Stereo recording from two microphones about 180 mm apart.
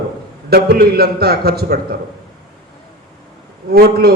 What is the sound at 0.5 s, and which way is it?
A man's voice, 60° right (ahead or behind).